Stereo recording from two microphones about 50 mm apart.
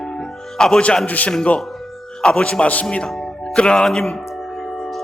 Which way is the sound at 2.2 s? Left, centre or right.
Centre.